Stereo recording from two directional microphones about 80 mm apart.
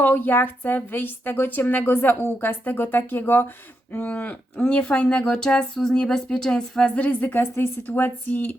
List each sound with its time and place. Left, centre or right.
0.0 s a woman's voice: left